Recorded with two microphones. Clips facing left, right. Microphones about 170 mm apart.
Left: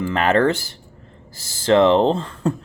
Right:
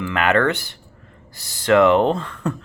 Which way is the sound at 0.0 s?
35° left (ahead or behind).